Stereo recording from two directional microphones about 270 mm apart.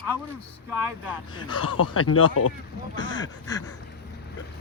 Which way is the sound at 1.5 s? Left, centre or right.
Left.